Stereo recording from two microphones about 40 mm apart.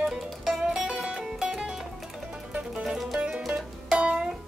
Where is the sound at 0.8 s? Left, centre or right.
Centre.